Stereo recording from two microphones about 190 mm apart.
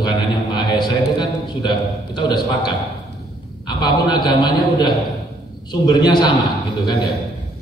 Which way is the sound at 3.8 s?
20° left (ahead or behind).